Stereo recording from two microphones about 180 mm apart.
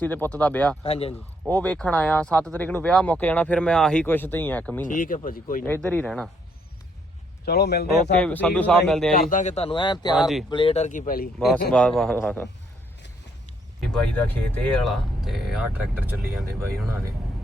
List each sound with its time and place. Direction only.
0.0 s speech: 10° left (ahead or behind)
0.8 s speech: 35° left (ahead or behind)
1.5 s speech: 10° left (ahead or behind)
4.9 s speech: 50° left (ahead or behind)
5.6 s speech: 10° left (ahead or behind)
7.4 s a man's voice: 65° left (ahead or behind)
8.2 s speech: 10° left (ahead or behind)
9.3 s speech: 40° left (ahead or behind); by 10.2 s 25° left (ahead or behind)
10.2 s speech: centre (ahead or behind)
10.5 s speech: 30° left (ahead or behind); by 11.3 s 50° left (ahead or behind)
11.3 s speech: 5° left (ahead or behind)
13.8 s speech: 10° left (ahead or behind)
15.2 s speech: centre (ahead or behind)